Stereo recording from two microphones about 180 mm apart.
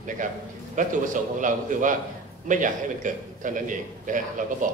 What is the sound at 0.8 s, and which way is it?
A man's voice, 45° right (ahead or behind).